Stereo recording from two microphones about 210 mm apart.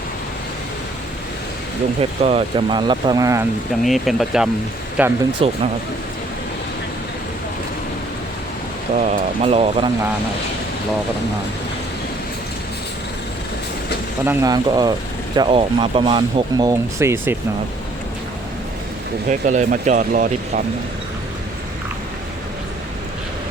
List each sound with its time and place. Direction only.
2.0 s speech: 30° right (ahead or behind)
3.8 s speech: centre (ahead or behind)
5.4 s speech: 30° right (ahead or behind)
9.0 s speech: 30° right (ahead or behind)
14.3 s speech: 20° right (ahead or behind)
19.3 s speech: 35° right (ahead or behind)